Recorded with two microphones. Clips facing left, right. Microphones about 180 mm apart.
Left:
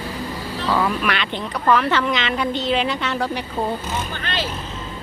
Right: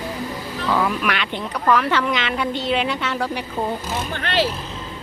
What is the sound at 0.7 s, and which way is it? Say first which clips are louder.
A woman's voice: even; centre (ahead or behind).